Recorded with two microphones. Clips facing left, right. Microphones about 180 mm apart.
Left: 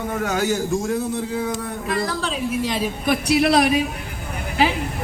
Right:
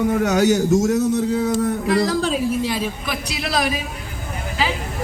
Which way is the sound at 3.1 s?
60° left (ahead or behind).